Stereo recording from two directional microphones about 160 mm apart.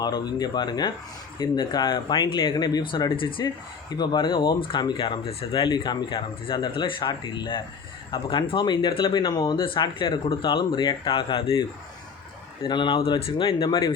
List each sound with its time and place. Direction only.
0.0 s speech: 25° left (ahead or behind)
12.6 s speech: 30° left (ahead or behind)